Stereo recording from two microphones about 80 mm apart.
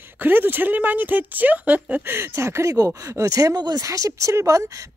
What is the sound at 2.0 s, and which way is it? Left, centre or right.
Speech, right.